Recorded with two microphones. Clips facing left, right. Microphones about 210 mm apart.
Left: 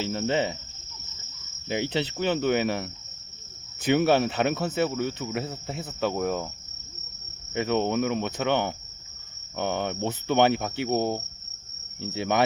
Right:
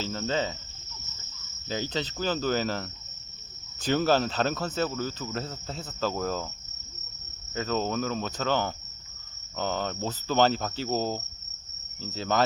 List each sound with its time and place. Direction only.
0.0 s cricket: 25° left (ahead or behind)
2.1 s cricket: 20° left (ahead or behind)
3.9 s cricket: 20° left (ahead or behind)
4.6 s cricket: 10° left (ahead or behind)
4.9 s cricket: 25° left (ahead or behind)
5.4 s cricket: 10° left (ahead or behind)
6.0 s cricket: 20° left (ahead or behind)
7.5 s cricket: 20° left (ahead or behind)